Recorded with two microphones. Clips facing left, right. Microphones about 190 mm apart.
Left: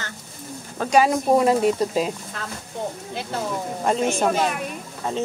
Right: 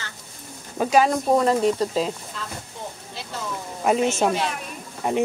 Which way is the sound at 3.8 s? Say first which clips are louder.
Right 1 dB; 10° right (ahead or behind).